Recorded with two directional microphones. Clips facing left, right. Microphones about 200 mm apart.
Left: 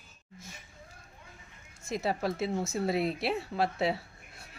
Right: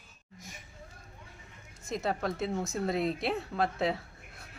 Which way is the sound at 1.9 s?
5° left (ahead or behind).